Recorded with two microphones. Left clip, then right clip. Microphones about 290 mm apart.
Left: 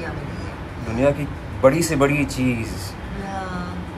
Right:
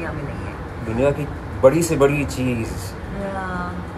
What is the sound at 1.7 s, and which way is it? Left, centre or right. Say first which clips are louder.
Speech: right 2 dB; left.